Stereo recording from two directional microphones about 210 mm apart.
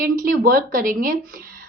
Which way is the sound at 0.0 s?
40° right (ahead or behind).